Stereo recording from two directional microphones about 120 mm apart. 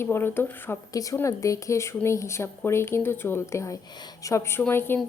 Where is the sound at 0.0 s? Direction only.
20° left (ahead or behind).